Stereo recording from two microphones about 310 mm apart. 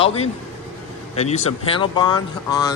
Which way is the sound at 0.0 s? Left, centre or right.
Centre.